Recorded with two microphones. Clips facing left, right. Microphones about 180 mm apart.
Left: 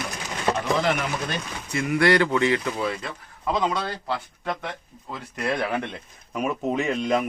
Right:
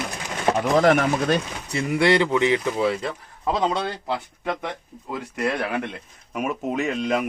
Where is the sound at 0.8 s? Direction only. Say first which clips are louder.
Right 7 dB; 45° right (ahead or behind).